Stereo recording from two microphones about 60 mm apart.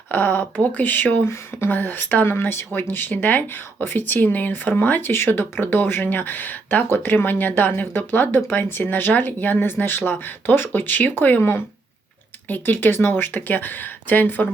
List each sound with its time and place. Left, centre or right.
0.1 s speech: left